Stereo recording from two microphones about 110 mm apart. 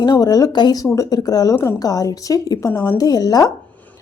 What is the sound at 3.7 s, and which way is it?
Dog, 15° left (ahead or behind).